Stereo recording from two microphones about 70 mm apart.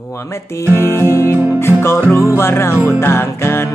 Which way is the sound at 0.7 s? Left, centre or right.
Left.